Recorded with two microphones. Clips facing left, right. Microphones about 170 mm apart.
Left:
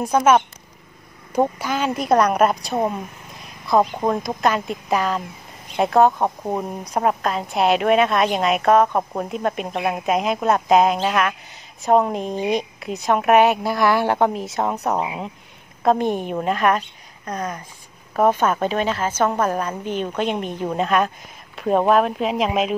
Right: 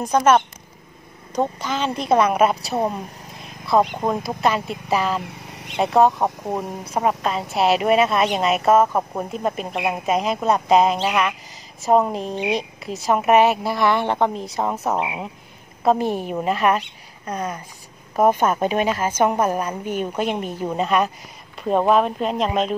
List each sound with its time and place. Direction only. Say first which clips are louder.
0.0 s speech: even; 10° left (ahead or behind)
5.2 s vehicle: right 2 dB; 80° right
5.8 s a woman's voice: left 1 dB; centre (ahead or behind)